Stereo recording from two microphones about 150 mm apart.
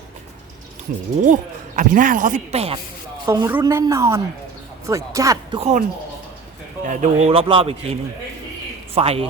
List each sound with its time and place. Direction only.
1.2 s speech: 55° right (ahead or behind)
3.2 s a woman's voice: 20° right (ahead or behind)
5.5 s speech: 50° right (ahead or behind)
6.8 s speech: 55° right (ahead or behind)
7.3 s a man's voice: 35° right (ahead or behind)
9.0 s a man's voice: 40° right (ahead or behind)